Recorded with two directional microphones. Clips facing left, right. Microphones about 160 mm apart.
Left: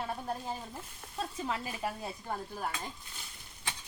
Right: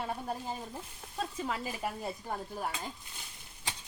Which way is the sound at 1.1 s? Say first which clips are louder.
Even; centre (ahead or behind).